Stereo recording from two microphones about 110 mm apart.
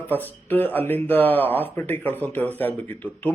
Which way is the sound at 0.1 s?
20° left (ahead or behind).